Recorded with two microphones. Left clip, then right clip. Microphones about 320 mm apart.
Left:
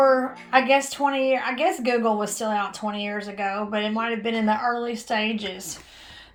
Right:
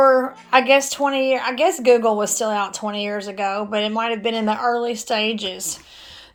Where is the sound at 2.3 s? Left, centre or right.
Centre.